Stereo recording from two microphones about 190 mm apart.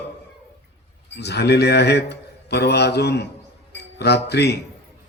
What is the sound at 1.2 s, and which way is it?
A man's voice, 60° left (ahead or behind).